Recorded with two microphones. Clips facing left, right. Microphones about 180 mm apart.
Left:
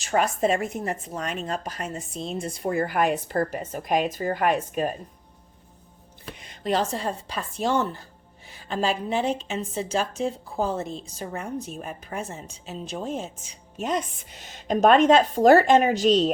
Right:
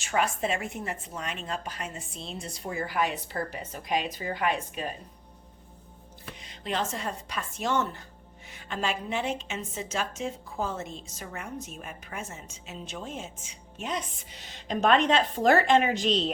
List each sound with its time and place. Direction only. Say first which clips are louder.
0.0 s a woman's voice: left 5 dB; 40° left (ahead or behind)
6.4 s a sound: left 8 dB; 50° left (ahead or behind)
6.7 s a woman's voice: left 4 dB; 35° left (ahead or behind)